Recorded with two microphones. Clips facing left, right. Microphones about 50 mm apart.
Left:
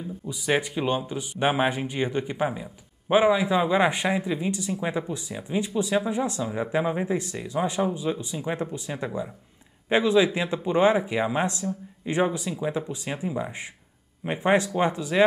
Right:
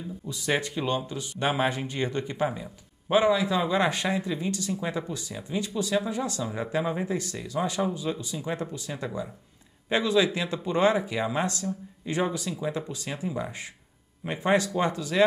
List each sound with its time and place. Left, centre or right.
0.3 s speech: centre